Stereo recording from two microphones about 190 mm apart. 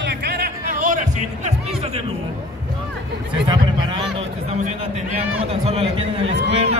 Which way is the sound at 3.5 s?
25° right (ahead or behind).